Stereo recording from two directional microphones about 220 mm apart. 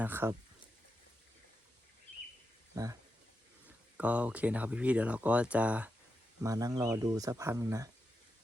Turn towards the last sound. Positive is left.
turn(degrees=-15)  # may be behind; listen again after turning